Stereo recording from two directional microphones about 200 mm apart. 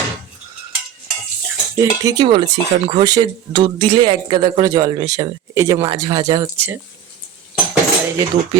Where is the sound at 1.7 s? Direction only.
15° right (ahead or behind).